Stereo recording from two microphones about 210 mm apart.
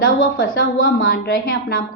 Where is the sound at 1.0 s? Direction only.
50° left (ahead or behind).